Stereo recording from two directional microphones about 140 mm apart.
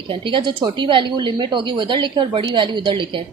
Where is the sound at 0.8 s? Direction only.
35° right (ahead or behind).